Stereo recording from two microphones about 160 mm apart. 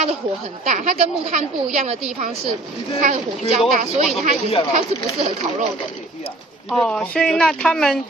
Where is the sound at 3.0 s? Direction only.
45° right (ahead or behind).